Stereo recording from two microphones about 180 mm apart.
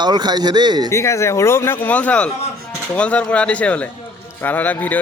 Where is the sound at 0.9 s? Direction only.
15° left (ahead or behind).